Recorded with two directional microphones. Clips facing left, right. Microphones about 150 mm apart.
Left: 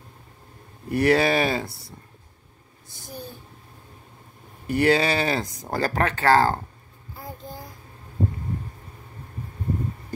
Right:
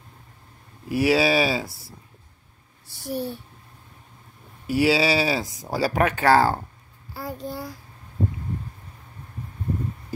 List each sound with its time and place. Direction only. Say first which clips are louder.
0.8 s speech: even; 5° right (ahead or behind)
2.9 s speech: right 10 dB; 65° right (ahead or behind)
4.6 s speech: even; 5° right (ahead or behind)
7.2 s child singing: right 6 dB; 85° right